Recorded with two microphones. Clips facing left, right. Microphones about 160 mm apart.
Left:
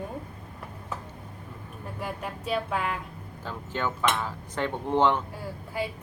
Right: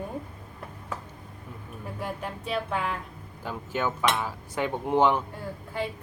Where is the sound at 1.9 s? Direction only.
Centre (ahead or behind).